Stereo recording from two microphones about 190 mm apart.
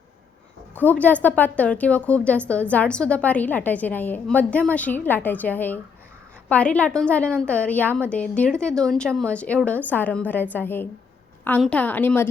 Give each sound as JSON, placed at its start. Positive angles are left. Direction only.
{"t": 0.8, "sound": "a woman's voice", "side_deg": 10}